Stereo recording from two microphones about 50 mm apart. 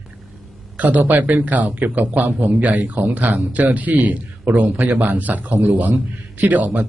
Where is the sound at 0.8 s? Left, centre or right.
Right.